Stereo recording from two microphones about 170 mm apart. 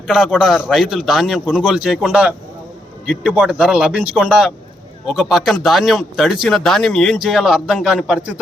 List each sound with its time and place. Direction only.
0.1 s speech: centre (ahead or behind)